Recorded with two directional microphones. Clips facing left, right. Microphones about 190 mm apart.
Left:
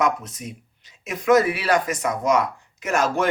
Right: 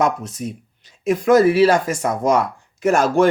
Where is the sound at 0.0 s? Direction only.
30° right (ahead or behind).